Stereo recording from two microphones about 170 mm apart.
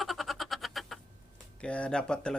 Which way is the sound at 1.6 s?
5° left (ahead or behind).